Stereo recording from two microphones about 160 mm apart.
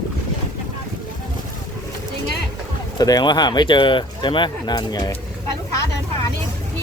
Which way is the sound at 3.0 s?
25° left (ahead or behind).